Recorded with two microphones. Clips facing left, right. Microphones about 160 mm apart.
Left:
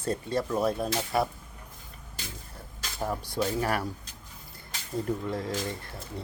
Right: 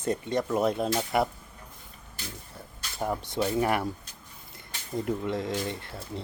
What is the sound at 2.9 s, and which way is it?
Speech, 15° right (ahead or behind).